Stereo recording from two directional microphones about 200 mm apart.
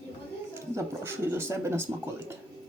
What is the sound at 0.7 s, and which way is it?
Speech, 15° right (ahead or behind).